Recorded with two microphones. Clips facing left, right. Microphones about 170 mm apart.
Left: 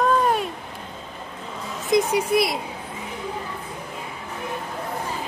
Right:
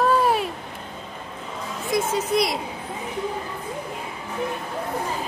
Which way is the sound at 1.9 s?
15° left (ahead or behind).